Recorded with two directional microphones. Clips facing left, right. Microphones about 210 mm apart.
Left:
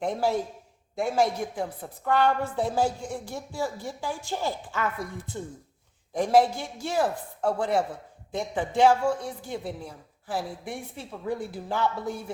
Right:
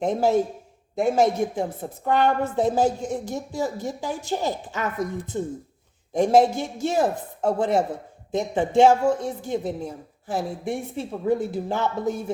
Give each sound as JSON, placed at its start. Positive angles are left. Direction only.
{"t": 0.0, "sound": "speech", "side_deg": -25}